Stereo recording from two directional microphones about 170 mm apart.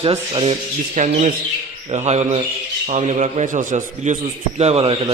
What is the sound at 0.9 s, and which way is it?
A man's voice, 50° right (ahead or behind).